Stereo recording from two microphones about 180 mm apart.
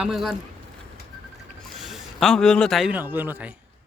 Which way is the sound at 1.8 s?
Centre (ahead or behind).